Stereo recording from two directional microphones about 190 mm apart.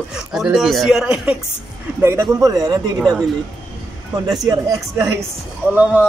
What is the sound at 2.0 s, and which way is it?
Speech, 15° right (ahead or behind).